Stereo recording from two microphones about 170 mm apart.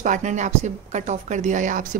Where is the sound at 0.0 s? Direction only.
45° right (ahead or behind).